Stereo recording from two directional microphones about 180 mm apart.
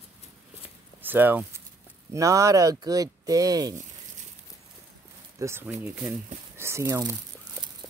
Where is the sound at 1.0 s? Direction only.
10° right (ahead or behind).